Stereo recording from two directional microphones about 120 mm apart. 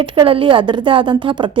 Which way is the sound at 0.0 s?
45° right (ahead or behind).